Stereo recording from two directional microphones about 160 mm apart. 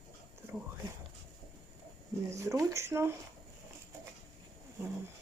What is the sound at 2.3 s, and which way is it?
Speech, 20° right (ahead or behind).